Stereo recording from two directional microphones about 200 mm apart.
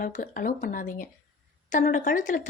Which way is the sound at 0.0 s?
40° left (ahead or behind).